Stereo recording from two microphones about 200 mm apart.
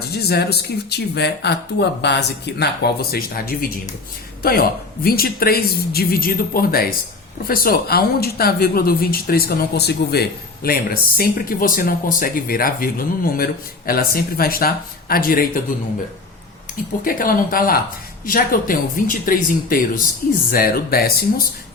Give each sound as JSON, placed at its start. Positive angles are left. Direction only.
{"t": 0.1, "sound": "speech", "side_deg": 55}
{"t": 5.0, "sound": "speech", "side_deg": 50}
{"t": 17.0, "sound": "speech", "side_deg": 45}